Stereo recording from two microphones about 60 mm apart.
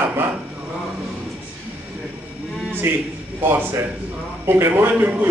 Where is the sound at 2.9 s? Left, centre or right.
Right.